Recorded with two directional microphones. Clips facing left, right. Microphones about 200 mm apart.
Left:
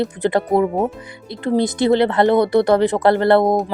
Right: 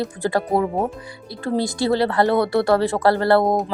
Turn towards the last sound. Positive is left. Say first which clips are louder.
# left 3 dB
turn(degrees=0)  # may be behind; listen again after turning